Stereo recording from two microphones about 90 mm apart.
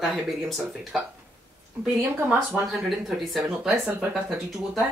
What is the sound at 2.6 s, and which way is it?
Speech, centre (ahead or behind).